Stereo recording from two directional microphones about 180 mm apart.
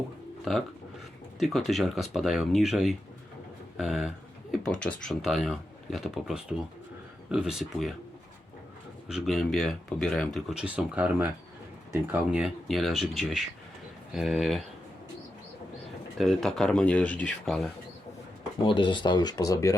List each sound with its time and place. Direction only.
0.5 s speech: centre (ahead or behind)
9.0 s speech: centre (ahead or behind)
16.1 s speech: centre (ahead or behind)
18.6 s speech: 30° left (ahead or behind)